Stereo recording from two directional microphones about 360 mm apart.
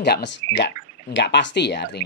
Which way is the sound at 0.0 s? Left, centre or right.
Left.